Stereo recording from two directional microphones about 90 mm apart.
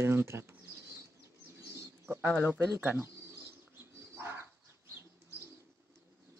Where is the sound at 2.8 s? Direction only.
25° right (ahead or behind).